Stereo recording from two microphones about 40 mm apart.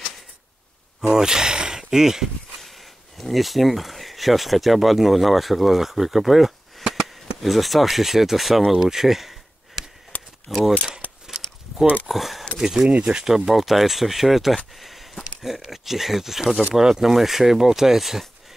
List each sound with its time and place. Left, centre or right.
1.0 s speech: centre
3.2 s speech: centre
8.7 s a sound: centre
10.5 s speech: centre
11.0 s a sound: left
12.1 s speech: centre
12.9 s speech: right
13.2 s speech: centre